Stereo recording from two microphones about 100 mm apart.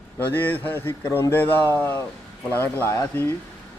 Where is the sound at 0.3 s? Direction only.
20° left (ahead or behind).